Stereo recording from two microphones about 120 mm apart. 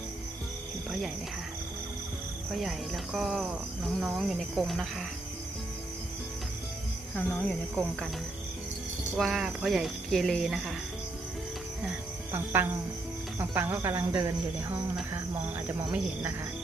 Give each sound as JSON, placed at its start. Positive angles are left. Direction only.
{"t": 2.5, "sound": "speech", "side_deg": 0}
{"t": 7.2, "sound": "speech", "side_deg": 5}
{"t": 9.1, "sound": "speech", "side_deg": 0}
{"t": 12.3, "sound": "cricket", "side_deg": -20}
{"t": 13.4, "sound": "speech", "side_deg": -15}
{"t": 15.6, "sound": "cricket", "side_deg": -15}